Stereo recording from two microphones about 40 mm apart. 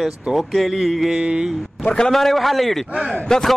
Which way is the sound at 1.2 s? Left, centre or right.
Right.